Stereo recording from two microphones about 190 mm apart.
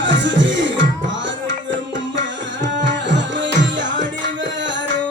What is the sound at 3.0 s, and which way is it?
Music, 70° right (ahead or behind).